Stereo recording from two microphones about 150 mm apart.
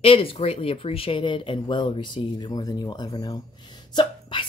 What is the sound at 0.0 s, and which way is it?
Speech, 40° left (ahead or behind).